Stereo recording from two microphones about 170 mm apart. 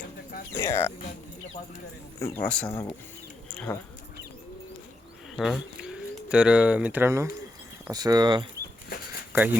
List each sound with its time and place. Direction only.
0.5 s speech: 15° left (ahead or behind)
2.1 s speech: 15° left (ahead or behind)
5.4 s speech: 5° right (ahead or behind); by 8.4 s 25° right (ahead or behind)
9.3 s speech: 10° right (ahead or behind)